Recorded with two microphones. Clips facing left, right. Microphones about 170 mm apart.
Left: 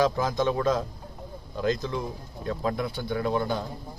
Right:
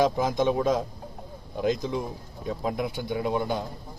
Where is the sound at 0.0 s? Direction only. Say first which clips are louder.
Right 1 dB; 20° right (ahead or behind).